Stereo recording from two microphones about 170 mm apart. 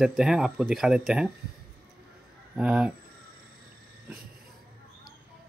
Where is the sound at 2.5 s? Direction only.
5° right (ahead or behind).